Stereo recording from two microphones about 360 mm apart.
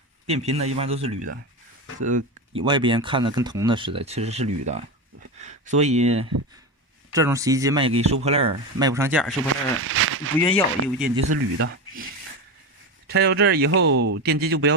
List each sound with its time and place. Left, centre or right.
0.3 s speech: centre
9.7 s speech: right
13.1 s speech: right